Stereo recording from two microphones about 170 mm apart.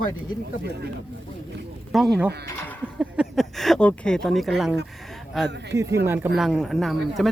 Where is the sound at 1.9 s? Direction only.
Centre (ahead or behind).